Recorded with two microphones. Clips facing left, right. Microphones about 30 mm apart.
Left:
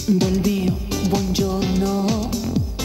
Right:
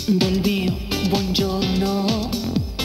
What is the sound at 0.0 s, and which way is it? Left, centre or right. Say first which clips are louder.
Music: even; right.